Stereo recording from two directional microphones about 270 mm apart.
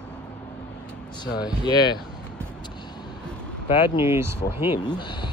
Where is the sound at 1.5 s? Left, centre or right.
Centre.